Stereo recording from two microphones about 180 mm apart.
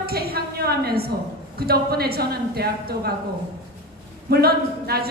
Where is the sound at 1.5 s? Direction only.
60° right (ahead or behind).